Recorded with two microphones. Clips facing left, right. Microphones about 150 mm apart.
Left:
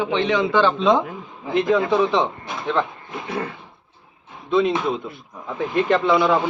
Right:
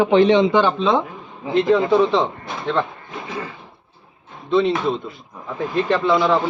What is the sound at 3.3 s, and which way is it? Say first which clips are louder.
Drawer open or close: left 3 dB; 60° left (ahead or behind).